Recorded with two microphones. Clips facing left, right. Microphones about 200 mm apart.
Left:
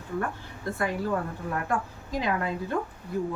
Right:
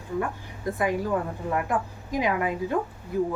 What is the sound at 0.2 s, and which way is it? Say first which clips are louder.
Speech: right 2 dB; 15° right (ahead or behind).